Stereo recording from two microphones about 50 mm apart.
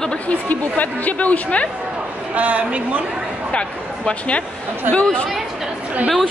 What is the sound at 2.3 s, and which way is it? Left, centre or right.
Speech, right.